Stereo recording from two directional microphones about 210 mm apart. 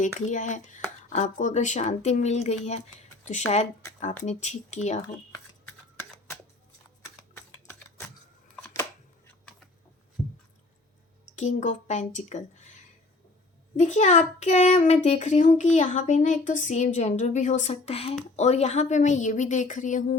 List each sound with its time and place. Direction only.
0.0 s a child's voice: 35° left (ahead or behind)
5.3 s shuffling cards: 15° left (ahead or behind)
7.3 s a sound: 10° left (ahead or behind)
8.7 s shuffling cards: 10° left (ahead or behind)
11.3 s a child's voice: 35° left (ahead or behind)
13.7 s a child's voice: 35° left (ahead or behind)